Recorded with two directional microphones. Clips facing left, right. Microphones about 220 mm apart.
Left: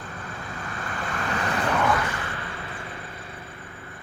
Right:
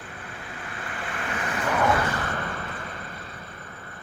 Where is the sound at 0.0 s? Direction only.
45° left (ahead or behind).